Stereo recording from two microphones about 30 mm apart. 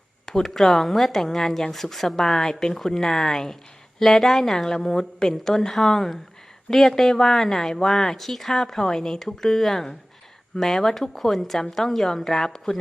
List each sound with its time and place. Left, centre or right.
0.3 s speech: centre
7.9 s speech: centre